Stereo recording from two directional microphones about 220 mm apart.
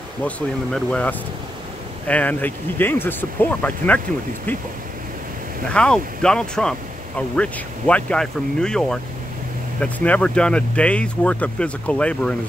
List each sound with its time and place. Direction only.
0.7 s speech: 5° left (ahead or behind)
5.7 s speech: 5° left (ahead or behind)